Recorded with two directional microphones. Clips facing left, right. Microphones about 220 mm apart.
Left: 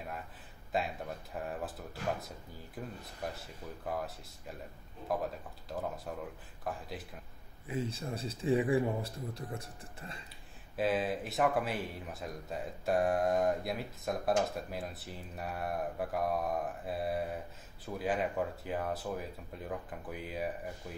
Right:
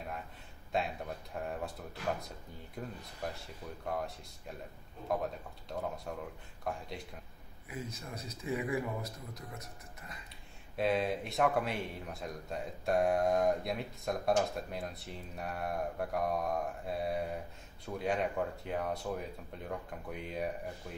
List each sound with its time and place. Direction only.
0.7 s speech: centre (ahead or behind)
5.7 s speech: centre (ahead or behind)
7.6 s a man's voice: 30° left (ahead or behind)
10.8 s speech: centre (ahead or behind)